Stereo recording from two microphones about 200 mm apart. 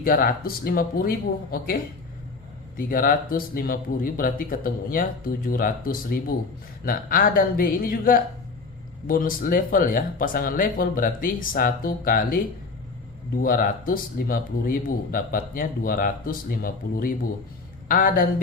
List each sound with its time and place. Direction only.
0.0 s speech: 45° left (ahead or behind)